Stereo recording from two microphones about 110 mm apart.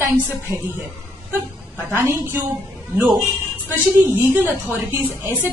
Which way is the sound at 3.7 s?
20° right (ahead or behind).